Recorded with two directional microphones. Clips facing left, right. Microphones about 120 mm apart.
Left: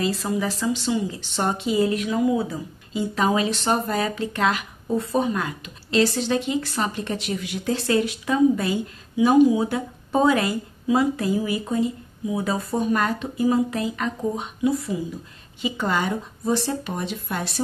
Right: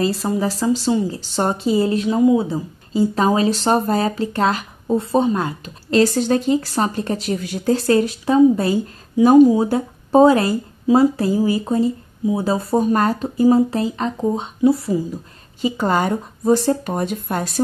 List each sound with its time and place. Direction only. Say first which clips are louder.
0.0 s speech: right 5 dB; 35° right (ahead or behind)